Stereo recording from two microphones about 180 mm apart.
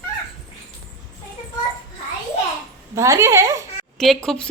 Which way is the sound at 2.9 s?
15° right (ahead or behind).